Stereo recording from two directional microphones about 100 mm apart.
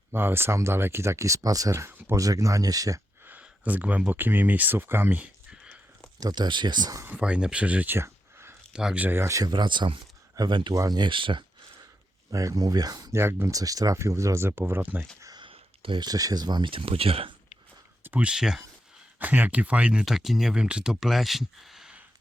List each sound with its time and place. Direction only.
0.1 s speech: 20° right (ahead or behind)
3.2 s speech: 15° right (ahead or behind)
6.1 s speech: 45° right (ahead or behind)
7.0 s speech: 15° right (ahead or behind)
7.9 s a sound: 25° right (ahead or behind)
8.7 s speech: 10° right (ahead or behind)
9.0 s speech: 25° right (ahead or behind)
9.5 s speech: 50° right (ahead or behind)
12.3 s speech: 35° right (ahead or behind)
13.1 s speech: 25° right (ahead or behind)
15.4 s a sound: 65° right (ahead or behind)
16.0 s speech: 40° right (ahead or behind); by 17.3 s 70° right (ahead or behind)
18.0 s speech: 15° right (ahead or behind)
19.2 s speech: 15° right (ahead or behind)